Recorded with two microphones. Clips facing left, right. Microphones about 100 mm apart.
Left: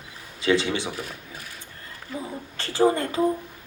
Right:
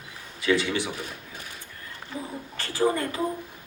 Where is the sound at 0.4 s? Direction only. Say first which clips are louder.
Left 2 dB; 30° left (ahead or behind).